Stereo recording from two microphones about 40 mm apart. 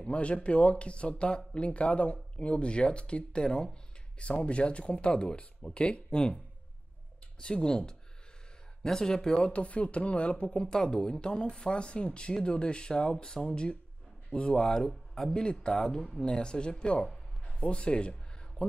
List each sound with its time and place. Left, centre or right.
0.1 s speech: left
4.2 s speech: left
9.5 s speech: left; by 14.9 s centre
14.9 s speech: centre
15.6 s speech: centre
17.1 s a sound: centre
17.6 s speech: left